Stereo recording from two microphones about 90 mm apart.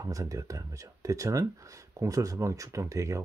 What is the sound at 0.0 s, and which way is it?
Speech, 40° right (ahead or behind).